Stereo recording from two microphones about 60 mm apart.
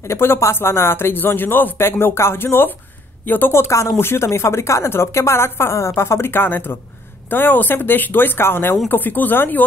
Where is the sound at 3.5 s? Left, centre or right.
Left.